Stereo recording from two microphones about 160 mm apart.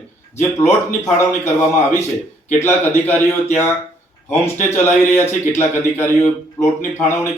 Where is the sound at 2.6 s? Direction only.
15° left (ahead or behind).